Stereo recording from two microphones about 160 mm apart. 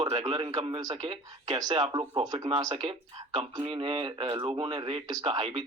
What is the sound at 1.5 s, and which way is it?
Speech, 25° right (ahead or behind).